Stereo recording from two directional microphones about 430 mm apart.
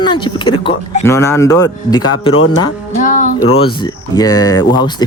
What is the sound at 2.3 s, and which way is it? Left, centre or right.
Speech, left.